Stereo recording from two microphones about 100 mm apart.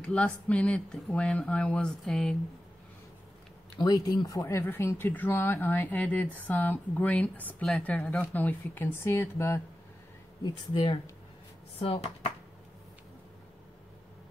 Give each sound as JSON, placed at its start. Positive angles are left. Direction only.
{"t": 0.0, "sound": "speech", "side_deg": 10}
{"t": 3.8, "sound": "speech", "side_deg": 40}
{"t": 10.4, "sound": "speech", "side_deg": 55}
{"t": 11.8, "sound": "speech", "side_deg": 90}